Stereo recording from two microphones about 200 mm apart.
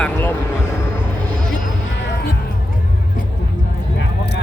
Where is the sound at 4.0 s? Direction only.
60° left (ahead or behind).